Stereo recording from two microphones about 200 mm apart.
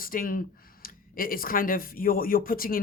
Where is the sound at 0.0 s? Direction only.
45° left (ahead or behind).